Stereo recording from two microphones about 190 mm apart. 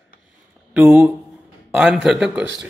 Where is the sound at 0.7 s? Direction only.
5° right (ahead or behind).